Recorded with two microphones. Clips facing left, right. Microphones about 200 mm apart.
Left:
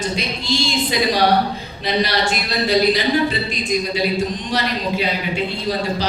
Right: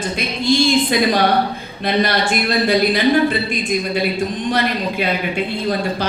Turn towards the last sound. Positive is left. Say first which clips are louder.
# right 1 dB
turn(degrees=-55)  # may be behind; listen again after turning